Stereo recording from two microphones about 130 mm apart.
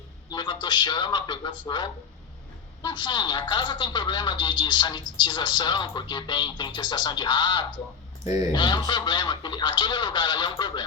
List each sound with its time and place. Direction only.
0.3 s a woman's voice: 35° left (ahead or behind)
8.2 s speech: 30° right (ahead or behind)
8.5 s a woman's voice: 35° left (ahead or behind)